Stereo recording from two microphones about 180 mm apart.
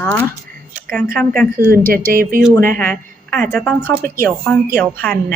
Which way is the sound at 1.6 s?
15° right (ahead or behind).